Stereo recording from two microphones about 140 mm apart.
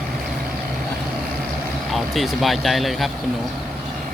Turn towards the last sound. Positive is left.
turn(degrees=0)  # may be behind; listen again after turning